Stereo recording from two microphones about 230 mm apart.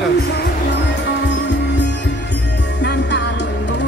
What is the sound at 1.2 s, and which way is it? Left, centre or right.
Music, left.